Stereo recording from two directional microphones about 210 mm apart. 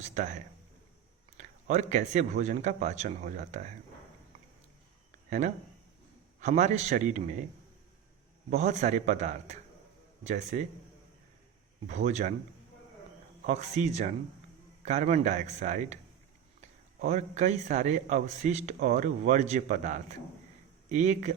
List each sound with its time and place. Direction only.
0.0 s speech: 35° right (ahead or behind)
1.4 s speech: 35° right (ahead or behind)
6.4 s speech: 35° right (ahead or behind)
8.4 s speech: 35° right (ahead or behind)
11.9 s speech: 35° right (ahead or behind)
13.4 s speech: 35° right (ahead or behind)
17.0 s speech: 35° right (ahead or behind)